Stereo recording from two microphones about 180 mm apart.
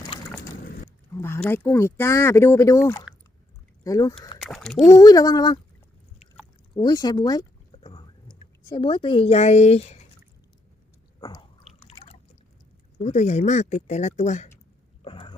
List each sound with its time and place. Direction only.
0.1 s a sound: 30° left (ahead or behind)
1.2 s speech: 10° left (ahead or behind)
3.8 s speech: 20° left (ahead or behind)
4.4 s speech: centre (ahead or behind)
4.9 s speech: 20° left (ahead or behind)
6.7 s a sound: 25° left (ahead or behind)
11.2 s chewing: 25° left (ahead or behind)
13.0 s speech: 40° left (ahead or behind)
15.0 s a sound: 30° left (ahead or behind)